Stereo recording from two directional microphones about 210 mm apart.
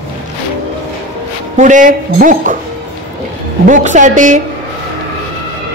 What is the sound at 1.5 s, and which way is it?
Speech, 35° right (ahead or behind).